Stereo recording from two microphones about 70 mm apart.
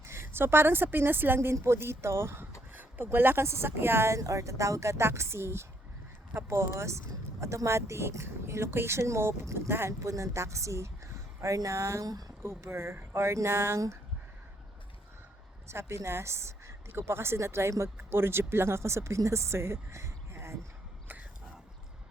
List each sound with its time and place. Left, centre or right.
0.0 s a woman's voice: right
4.2 s a woman's voice: right
15.7 s a woman's voice: right